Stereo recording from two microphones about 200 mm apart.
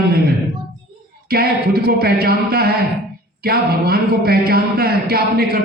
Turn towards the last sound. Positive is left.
turn(degrees=-50)  # may be behind; listen again after turning